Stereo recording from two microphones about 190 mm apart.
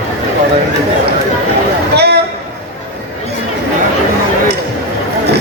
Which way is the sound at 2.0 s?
60° right (ahead or behind).